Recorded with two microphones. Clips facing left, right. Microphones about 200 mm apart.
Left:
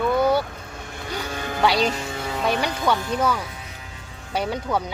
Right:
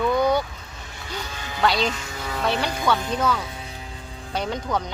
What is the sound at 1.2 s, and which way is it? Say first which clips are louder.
Music: left 5 dB; 55° left (ahead or behind).